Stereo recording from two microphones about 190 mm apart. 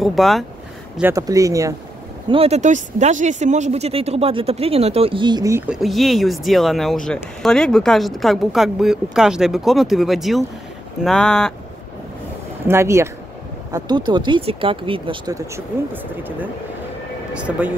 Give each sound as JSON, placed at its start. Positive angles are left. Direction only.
{"t": 0.0, "sound": "speech", "side_deg": 0}
{"t": 1.1, "sound": "speech", "side_deg": -20}
{"t": 2.2, "sound": "speech", "side_deg": -30}
{"t": 12.6, "sound": "speech", "side_deg": -15}